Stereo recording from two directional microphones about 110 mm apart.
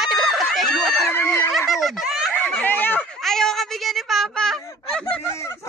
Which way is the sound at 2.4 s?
15° left (ahead or behind).